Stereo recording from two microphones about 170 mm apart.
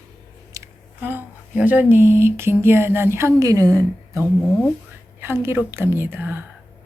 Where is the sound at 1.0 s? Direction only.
10° right (ahead or behind).